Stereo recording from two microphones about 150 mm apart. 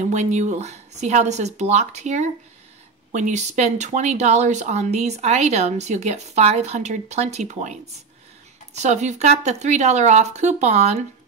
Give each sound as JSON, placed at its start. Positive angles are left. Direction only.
{"t": 0.0, "sound": "speech", "side_deg": -50}